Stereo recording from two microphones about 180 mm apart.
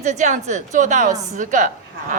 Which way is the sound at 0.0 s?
40° right (ahead or behind).